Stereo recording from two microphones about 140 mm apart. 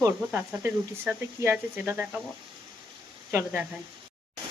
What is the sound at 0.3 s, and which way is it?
Speech, 10° right (ahead or behind).